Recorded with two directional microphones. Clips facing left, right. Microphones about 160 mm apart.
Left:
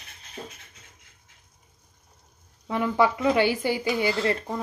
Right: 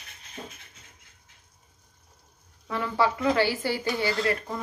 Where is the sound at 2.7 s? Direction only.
20° left (ahead or behind).